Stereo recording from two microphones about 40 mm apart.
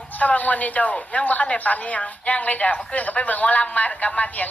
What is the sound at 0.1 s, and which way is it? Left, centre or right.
A woman's voice, left.